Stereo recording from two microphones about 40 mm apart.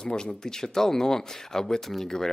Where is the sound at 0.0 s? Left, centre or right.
Centre.